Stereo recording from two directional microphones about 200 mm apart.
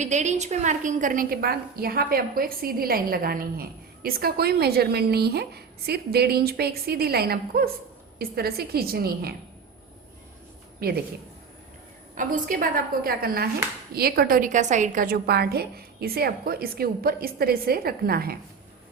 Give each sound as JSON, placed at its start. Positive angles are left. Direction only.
{"t": 0.0, "sound": "a woman's voice", "side_deg": -35}
{"t": 10.8, "sound": "a woman's voice", "side_deg": -50}
{"t": 12.1, "sound": "a woman's voice", "side_deg": -45}